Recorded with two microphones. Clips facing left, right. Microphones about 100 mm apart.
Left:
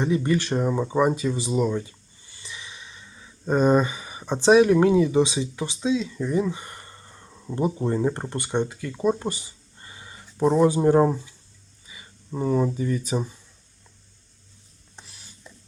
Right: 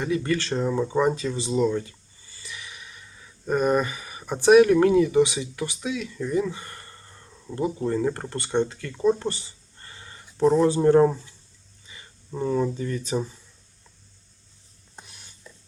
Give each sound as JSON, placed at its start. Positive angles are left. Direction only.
{"t": 0.0, "sound": "speech", "side_deg": 20}
{"t": 1.8, "sound": "a sound", "side_deg": 20}
{"t": 4.3, "sound": "speech", "side_deg": 20}
{"t": 14.9, "sound": "mechanisms", "side_deg": 0}